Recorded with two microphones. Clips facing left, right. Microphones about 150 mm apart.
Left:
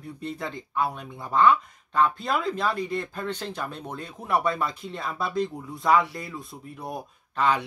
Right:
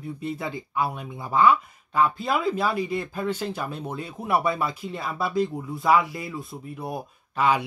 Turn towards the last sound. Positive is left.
turn(degrees=-10)  # may be behind; listen again after turning